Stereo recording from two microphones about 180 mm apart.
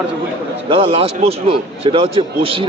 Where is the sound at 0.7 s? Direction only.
30° right (ahead or behind).